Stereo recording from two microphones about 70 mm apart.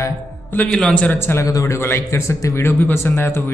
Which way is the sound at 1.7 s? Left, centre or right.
Left.